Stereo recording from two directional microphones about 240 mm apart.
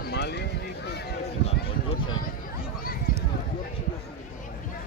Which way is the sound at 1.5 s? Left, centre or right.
Left.